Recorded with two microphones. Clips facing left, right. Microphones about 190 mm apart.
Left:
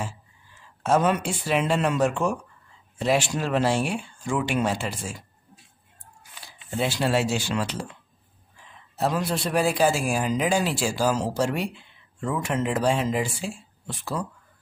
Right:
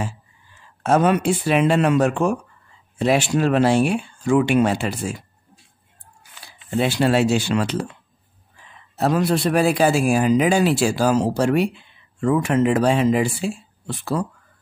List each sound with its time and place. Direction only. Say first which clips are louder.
0.8 s a man's voice: right 5 dB; 60° right (ahead or behind)
6.8 s a man's voice: right 6 dB; 65° right (ahead or behind)
8.9 s a man's voice: right 6 dB; 65° right (ahead or behind)